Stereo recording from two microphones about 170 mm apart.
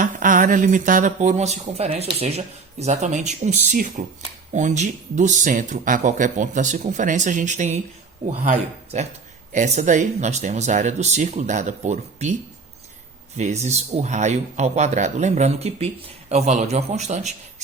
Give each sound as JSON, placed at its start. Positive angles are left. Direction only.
{"t": 0.0, "sound": "speech", "side_deg": -50}